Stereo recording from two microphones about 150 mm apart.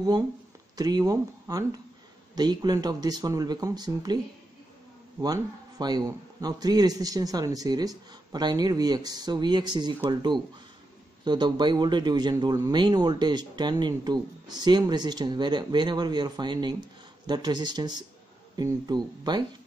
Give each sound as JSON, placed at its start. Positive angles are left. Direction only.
{"t": 0.7, "sound": "speech", "side_deg": -25}
{"t": 5.2, "sound": "speech", "side_deg": -25}
{"t": 11.2, "sound": "speech", "side_deg": -30}